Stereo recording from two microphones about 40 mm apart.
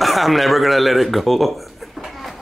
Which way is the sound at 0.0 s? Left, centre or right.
Centre.